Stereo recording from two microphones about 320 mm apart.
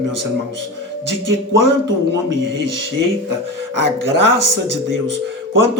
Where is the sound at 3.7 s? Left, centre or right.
Right.